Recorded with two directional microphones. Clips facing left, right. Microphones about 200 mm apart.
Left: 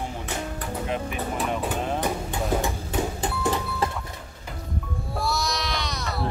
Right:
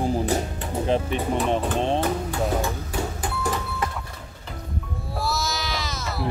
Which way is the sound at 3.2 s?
25° left (ahead or behind).